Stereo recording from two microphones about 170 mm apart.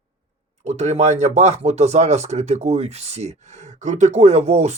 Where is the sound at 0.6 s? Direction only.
40° right (ahead or behind).